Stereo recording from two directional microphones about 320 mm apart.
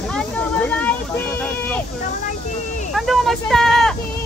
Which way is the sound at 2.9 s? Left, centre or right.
Centre.